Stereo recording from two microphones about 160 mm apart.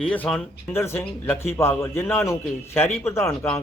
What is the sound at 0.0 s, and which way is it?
A man's voice, 5° left (ahead or behind).